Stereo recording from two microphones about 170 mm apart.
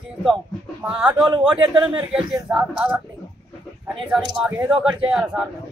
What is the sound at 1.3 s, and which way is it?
Speech, 30° right (ahead or behind).